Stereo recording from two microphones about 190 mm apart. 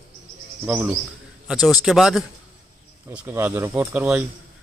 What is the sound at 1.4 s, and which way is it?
A man's voice, centre (ahead or behind).